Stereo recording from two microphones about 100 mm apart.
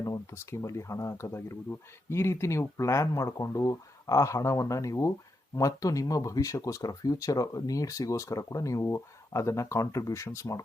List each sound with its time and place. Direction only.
0.0 s speech: 30° left (ahead or behind)